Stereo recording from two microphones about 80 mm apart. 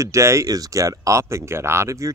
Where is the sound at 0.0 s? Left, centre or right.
Right.